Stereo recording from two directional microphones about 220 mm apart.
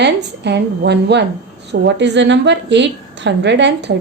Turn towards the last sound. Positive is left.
turn(degrees=-50)  # may be behind; listen again after turning